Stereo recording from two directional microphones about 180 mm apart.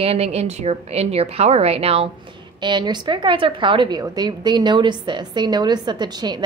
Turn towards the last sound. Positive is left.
turn(degrees=-25)  # may be behind; listen again after turning